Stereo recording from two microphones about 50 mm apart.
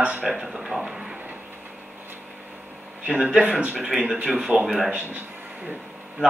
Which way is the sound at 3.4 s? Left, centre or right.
Right.